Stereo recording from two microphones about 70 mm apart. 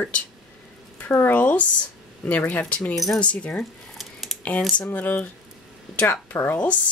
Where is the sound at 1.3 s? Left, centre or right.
Left.